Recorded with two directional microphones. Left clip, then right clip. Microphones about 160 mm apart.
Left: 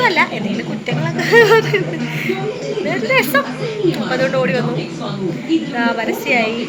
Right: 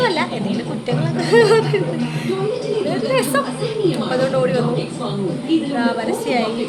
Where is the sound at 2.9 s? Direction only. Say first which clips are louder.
Left 5 dB; centre (ahead or behind).